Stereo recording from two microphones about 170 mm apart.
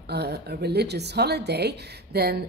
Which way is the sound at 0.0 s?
75° right (ahead or behind).